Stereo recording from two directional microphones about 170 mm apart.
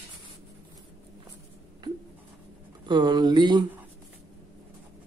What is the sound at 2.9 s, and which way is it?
Speech, 25° right (ahead or behind).